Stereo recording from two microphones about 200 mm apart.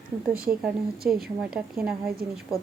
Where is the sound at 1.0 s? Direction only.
50° right (ahead or behind).